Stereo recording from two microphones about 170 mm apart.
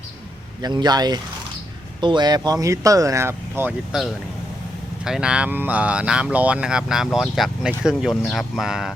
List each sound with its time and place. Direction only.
0.6 s speech: 25° right (ahead or behind)
5.0 s speech: 5° right (ahead or behind)